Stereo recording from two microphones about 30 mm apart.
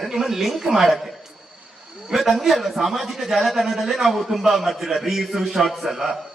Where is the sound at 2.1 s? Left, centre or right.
Centre.